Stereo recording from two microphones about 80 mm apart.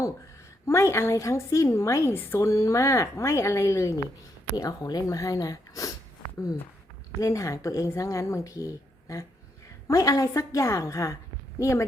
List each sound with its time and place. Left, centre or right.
0.7 s a woman's voice: left
4.5 s a woman's voice: left
7.2 s a woman's voice: left